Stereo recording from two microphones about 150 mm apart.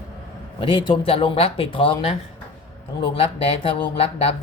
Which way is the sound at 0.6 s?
35° left (ahead or behind).